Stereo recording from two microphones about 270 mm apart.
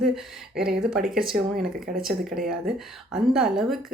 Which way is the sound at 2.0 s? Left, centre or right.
Centre.